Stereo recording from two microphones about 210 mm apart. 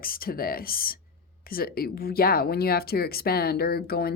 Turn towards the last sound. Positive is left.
turn(degrees=45)  # may be behind; listen again after turning